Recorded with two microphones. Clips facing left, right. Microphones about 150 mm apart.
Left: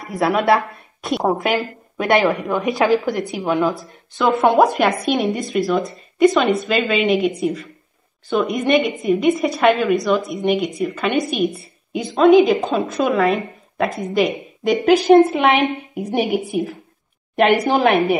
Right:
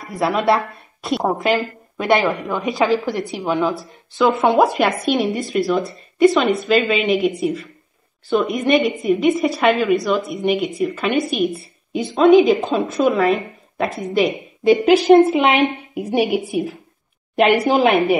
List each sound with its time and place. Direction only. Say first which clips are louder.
0.0 s a woman's voice: left 1 dB; centre (ahead or behind)